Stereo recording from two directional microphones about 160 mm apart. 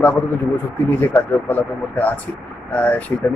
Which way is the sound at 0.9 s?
15° left (ahead or behind).